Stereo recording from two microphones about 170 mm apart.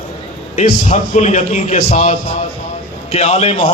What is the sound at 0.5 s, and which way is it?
A man's voice, 45° left (ahead or behind).